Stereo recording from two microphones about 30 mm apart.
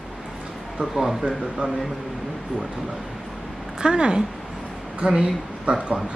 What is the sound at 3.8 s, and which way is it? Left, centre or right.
Speech, right.